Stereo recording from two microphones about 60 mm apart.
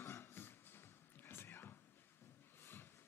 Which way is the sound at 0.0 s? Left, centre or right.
Left.